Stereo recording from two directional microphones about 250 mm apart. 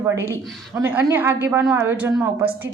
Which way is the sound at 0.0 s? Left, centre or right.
Centre.